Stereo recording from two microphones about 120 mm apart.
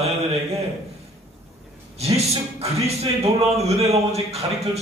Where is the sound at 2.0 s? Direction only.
60° right (ahead or behind).